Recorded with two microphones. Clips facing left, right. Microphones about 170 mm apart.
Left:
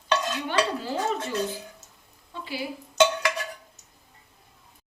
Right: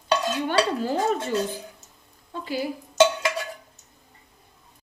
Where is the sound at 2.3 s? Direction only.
45° right (ahead or behind).